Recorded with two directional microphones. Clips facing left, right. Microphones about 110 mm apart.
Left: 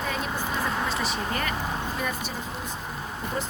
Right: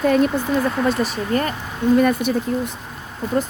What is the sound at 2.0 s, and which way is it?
Speech, 60° right (ahead or behind).